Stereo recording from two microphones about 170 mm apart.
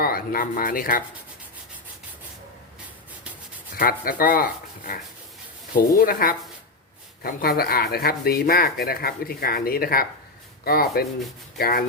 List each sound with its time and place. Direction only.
0.0 s speech: 60° left (ahead or behind)
3.8 s speech: 60° left (ahead or behind)